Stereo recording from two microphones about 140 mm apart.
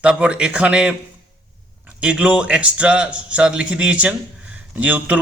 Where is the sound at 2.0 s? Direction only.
10° right (ahead or behind).